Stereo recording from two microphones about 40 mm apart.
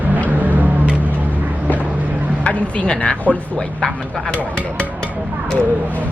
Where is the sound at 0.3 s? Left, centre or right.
Right.